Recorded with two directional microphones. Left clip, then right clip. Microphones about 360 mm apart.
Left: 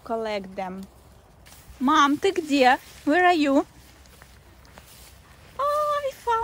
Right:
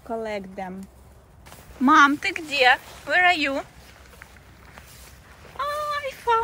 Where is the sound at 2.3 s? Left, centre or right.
Centre.